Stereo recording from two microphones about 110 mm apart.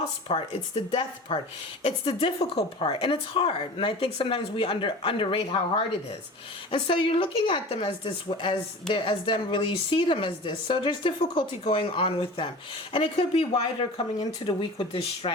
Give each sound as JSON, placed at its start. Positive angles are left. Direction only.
{"t": 0.3, "sound": "speech", "side_deg": 70}
{"t": 0.9, "sound": "a woman's voice", "side_deg": 50}
{"t": 1.8, "sound": "a woman's voice", "side_deg": 60}
{"t": 14.6, "sound": "a woman's voice", "side_deg": 55}